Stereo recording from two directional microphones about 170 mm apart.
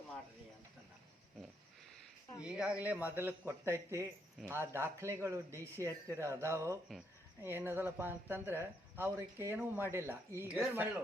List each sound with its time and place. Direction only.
2.4 s speech: 5° right (ahead or behind)